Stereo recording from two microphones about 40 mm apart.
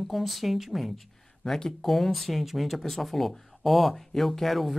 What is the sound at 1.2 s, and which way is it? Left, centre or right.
Speech, centre.